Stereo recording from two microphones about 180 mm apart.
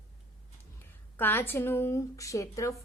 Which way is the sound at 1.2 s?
10° left (ahead or behind).